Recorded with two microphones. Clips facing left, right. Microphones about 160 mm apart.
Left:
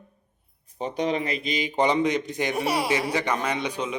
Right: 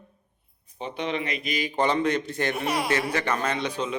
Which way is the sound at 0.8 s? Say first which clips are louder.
Left 4 dB; 40° left (ahead or behind).